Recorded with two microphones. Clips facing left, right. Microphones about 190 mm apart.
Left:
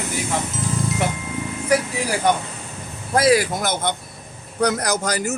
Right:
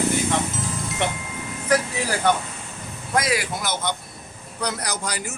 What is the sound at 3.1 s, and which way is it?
A man's voice, 35° left (ahead or behind).